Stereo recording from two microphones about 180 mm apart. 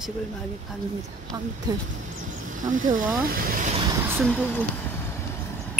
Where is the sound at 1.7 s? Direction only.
20° right (ahead or behind).